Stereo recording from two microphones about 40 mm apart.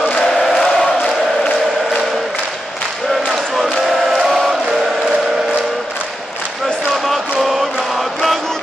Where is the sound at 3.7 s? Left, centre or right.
Centre.